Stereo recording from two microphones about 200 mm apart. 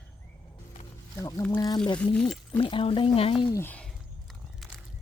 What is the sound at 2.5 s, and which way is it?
Speech, 25° left (ahead or behind).